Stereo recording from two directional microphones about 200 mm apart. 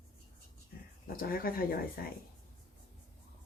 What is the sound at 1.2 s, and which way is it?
Speech, 45° left (ahead or behind).